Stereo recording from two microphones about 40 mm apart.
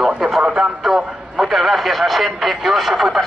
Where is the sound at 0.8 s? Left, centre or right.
Centre.